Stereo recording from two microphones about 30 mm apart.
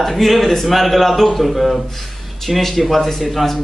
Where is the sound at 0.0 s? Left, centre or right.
Centre.